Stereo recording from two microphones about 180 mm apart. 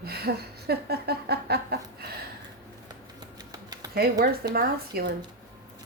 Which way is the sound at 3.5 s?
20° right (ahead or behind).